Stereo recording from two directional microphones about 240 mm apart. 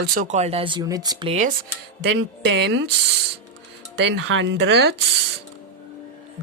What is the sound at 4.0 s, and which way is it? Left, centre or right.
Speech, right.